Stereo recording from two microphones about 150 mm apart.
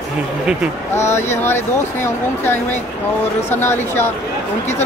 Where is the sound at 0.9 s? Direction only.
15° left (ahead or behind).